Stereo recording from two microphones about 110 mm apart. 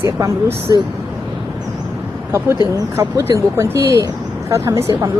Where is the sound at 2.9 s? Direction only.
25° right (ahead or behind).